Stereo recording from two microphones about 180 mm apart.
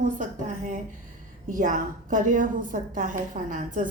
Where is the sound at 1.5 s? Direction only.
45° right (ahead or behind).